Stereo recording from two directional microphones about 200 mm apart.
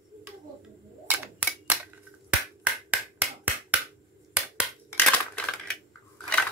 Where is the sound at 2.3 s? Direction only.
5° right (ahead or behind).